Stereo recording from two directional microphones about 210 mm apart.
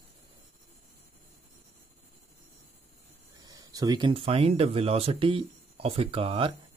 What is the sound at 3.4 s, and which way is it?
Speech, 20° right (ahead or behind).